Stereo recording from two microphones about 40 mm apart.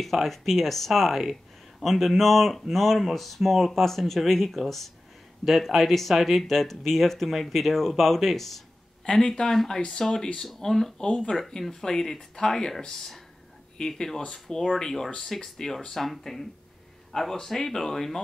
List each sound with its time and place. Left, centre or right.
0.0 s speech: centre
9.2 s speech: centre
11.3 s speech: centre